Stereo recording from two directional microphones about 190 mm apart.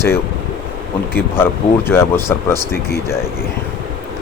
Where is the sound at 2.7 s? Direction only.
55° left (ahead or behind).